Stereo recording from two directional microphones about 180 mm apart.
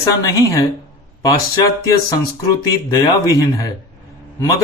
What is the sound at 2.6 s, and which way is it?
Speech, 20° left (ahead or behind).